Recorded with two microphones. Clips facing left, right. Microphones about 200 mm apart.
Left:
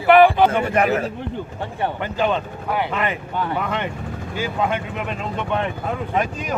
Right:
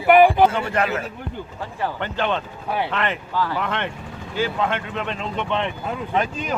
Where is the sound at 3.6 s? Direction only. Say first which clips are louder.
Left 1 dB; 10° left (ahead or behind).